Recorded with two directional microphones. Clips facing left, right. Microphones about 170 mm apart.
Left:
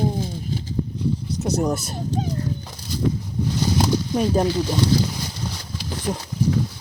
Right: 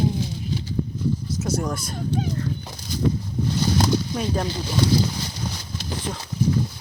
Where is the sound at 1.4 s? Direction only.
20° left (ahead or behind).